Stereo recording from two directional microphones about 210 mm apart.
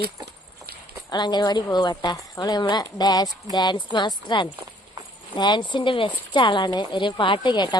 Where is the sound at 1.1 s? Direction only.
20° left (ahead or behind).